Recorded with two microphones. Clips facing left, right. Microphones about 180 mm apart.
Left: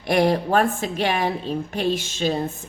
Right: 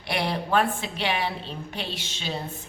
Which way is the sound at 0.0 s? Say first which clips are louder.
Left 9 dB; 45° left (ahead or behind).